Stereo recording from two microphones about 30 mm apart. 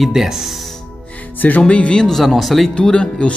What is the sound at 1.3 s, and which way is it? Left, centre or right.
Music, left.